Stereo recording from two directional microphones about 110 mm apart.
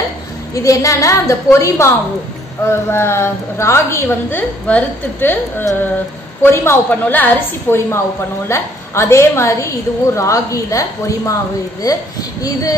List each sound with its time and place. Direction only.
0.6 s a woman's voice: 30° left (ahead or behind)